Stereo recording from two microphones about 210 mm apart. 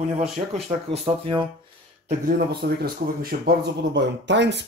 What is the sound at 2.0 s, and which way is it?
Speech, 45° right (ahead or behind).